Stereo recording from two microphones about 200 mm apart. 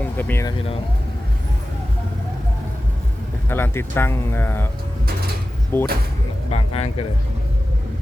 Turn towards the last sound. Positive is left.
turn(degrees=30)  # may be behind; listen again after turning